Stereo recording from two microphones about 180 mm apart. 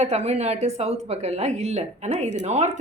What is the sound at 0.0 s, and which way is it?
A woman's voice, 40° right (ahead or behind).